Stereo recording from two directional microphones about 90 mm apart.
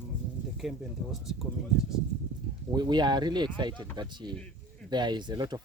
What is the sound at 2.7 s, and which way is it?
Speech, 55° right (ahead or behind).